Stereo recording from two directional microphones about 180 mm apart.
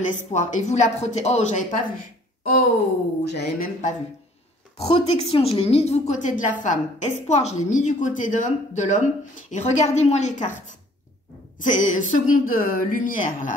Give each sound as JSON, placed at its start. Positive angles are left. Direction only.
{"t": 0.1, "sound": "a woman's voice", "side_deg": 40}
{"t": 3.3, "sound": "speech", "side_deg": 60}
{"t": 4.7, "sound": "a woman's voice", "side_deg": 35}
{"t": 11.6, "sound": "speech", "side_deg": 45}